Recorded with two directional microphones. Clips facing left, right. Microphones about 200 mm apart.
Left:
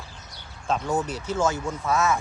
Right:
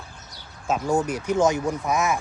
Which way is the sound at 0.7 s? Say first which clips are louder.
Right 3 dB; 10° right (ahead or behind).